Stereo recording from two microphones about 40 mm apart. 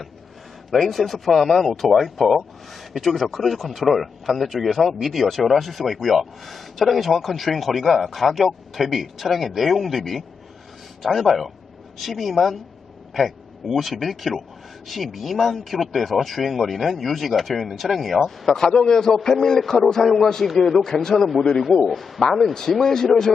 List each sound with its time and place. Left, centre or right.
0.7 s speech: centre
18.4 s speech: centre
18.7 s a man's voice: left
18.9 s speech: centre
21.8 s speech: centre